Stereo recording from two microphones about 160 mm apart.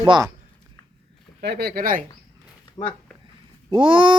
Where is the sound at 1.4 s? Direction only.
90° right; by 2.0 s 65° right (ahead or behind).